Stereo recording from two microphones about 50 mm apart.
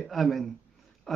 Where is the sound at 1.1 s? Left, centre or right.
Centre.